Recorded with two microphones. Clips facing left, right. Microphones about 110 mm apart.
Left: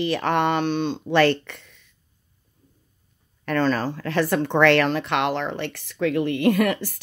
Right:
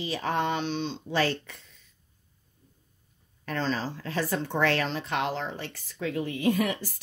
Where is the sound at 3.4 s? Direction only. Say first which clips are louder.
Left 8 dB; 60° left (ahead or behind).